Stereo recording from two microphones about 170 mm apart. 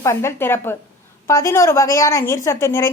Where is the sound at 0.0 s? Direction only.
15° left (ahead or behind).